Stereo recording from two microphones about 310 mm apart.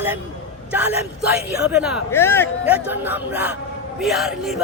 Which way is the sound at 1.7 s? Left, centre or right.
Centre.